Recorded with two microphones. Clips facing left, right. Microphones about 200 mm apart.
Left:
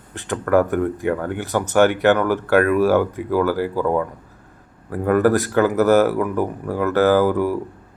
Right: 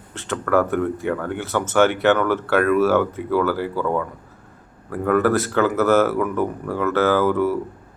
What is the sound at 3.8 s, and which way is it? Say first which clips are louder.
Speech: left 3 dB; 35° left (ahead or behind).